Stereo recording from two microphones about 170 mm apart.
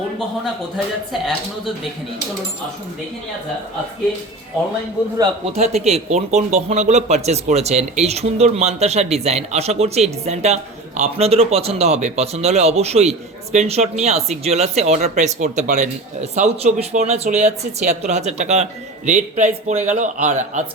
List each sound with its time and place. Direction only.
5.5 s a man's voice: 40° right (ahead or behind)